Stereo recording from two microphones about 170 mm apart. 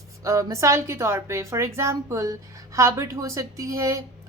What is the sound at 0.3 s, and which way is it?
A woman's voice, 20° right (ahead or behind).